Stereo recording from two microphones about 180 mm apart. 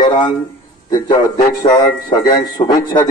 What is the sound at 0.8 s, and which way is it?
A man's voice, 25° left (ahead or behind).